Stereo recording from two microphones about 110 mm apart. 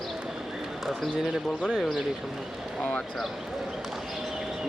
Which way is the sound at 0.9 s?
Centre (ahead or behind).